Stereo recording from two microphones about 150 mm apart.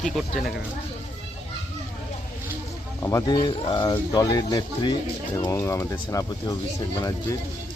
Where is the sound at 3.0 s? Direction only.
20° left (ahead or behind).